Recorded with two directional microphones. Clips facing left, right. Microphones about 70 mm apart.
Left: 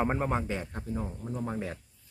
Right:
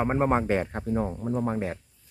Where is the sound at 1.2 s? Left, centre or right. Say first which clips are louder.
Right 7 dB; right.